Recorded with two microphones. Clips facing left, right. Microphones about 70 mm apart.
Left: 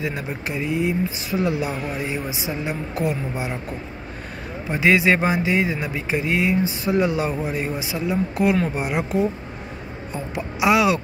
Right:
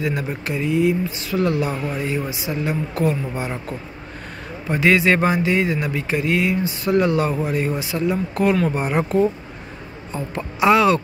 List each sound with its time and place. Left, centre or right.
0.0 s speech: centre
4.6 s speech: centre